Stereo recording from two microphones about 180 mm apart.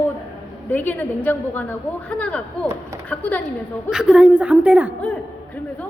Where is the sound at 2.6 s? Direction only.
15° right (ahead or behind).